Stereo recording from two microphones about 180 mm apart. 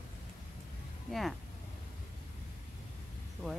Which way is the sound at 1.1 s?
Centre (ahead or behind).